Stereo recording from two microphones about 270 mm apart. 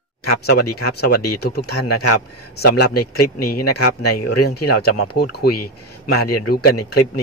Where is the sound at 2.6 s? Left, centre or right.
Left.